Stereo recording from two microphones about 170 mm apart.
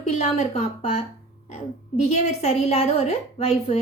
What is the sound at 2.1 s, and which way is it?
A woman's voice, 40° left (ahead or behind).